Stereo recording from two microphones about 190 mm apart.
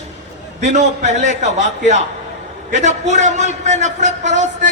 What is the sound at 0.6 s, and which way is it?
Speech, 40° right (ahead or behind).